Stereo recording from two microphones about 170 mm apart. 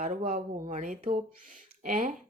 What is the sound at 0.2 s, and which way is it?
Speech, 45° right (ahead or behind).